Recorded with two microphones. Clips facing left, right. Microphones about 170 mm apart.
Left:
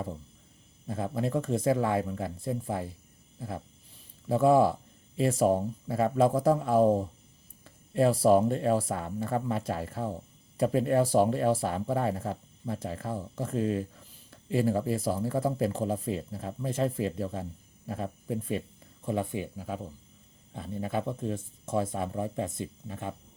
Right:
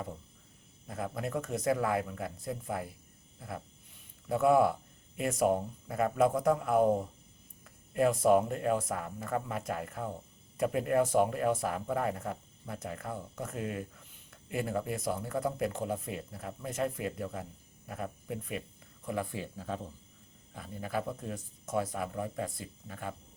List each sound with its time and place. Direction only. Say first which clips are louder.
0.9 s speech: left 5 dB; 30° left (ahead or behind); by 19.9 s 10° left (ahead or behind)
20.5 s speech: left 4 dB; 25° left (ahead or behind)